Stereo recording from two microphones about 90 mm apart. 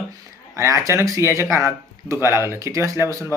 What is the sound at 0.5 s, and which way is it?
Speech, 35° right (ahead or behind).